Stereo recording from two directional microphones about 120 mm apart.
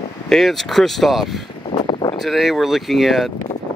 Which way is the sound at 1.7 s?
40° left (ahead or behind).